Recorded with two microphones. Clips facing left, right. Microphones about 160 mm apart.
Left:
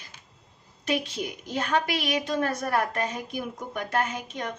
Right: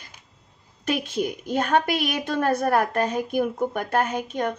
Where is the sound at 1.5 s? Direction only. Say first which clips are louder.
Right 4 dB; 50° right (ahead or behind).